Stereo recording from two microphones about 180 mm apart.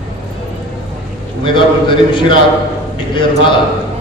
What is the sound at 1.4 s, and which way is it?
Speech, 25° left (ahead or behind).